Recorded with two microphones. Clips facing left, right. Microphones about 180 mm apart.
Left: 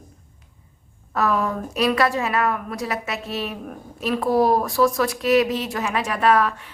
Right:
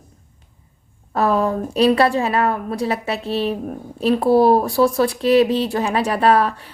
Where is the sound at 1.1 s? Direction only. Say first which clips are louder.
Right 4 dB; 30° right (ahead or behind).